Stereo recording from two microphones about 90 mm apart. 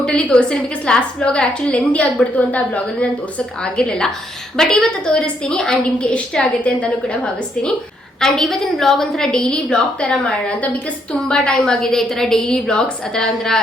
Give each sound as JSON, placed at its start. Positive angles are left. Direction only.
{"t": 0.0, "sound": "a woman's voice", "side_deg": 10}
{"t": 8.2, "sound": "a woman's voice", "side_deg": 5}